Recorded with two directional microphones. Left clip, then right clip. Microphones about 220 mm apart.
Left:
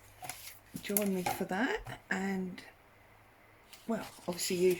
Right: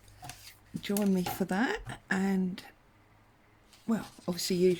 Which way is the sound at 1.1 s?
50° right (ahead or behind).